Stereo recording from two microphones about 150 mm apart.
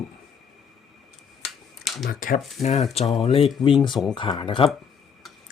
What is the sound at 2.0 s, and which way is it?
Speech, 65° left (ahead or behind).